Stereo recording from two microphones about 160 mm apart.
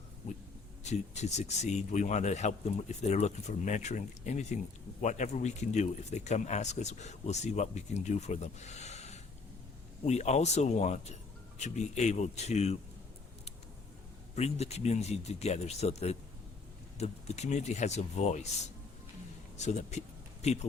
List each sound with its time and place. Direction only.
0.9 s speech: 45° left (ahead or behind)
14.3 s speech: 40° left (ahead or behind)